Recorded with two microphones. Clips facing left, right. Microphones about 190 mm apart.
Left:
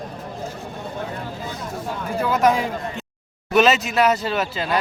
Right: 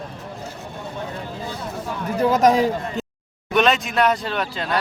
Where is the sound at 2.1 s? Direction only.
35° right (ahead or behind).